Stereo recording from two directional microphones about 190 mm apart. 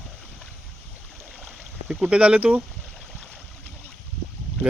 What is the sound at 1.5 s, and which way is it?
Speech, 5° right (ahead or behind).